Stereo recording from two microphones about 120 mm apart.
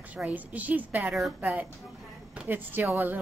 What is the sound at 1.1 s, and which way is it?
A woman's voice, 5° right (ahead or behind).